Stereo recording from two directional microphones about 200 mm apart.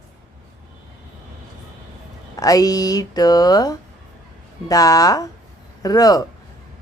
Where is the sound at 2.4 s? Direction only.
20° left (ahead or behind).